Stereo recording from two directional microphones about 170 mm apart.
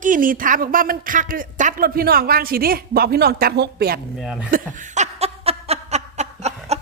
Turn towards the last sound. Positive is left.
turn(degrees=-40)  # may be behind; listen again after turning